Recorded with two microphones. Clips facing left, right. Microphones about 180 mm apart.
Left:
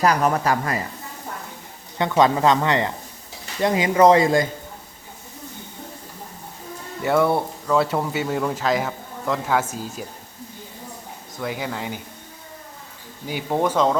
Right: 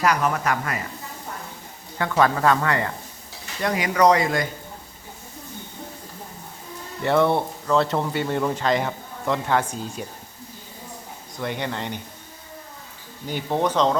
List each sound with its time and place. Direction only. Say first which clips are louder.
0.0 s speech: left 3 dB; 35° left (ahead or behind)
2.0 s a woman's voice: left 3 dB; 20° left (ahead or behind)
7.0 s speech: even; 5° left (ahead or behind)
11.3 s speech: even; 5° left (ahead or behind)
13.2 s speech: left 1 dB; 10° left (ahead or behind)